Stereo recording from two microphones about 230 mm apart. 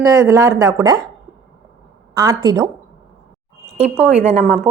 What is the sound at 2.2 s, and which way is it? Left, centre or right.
Speech, centre.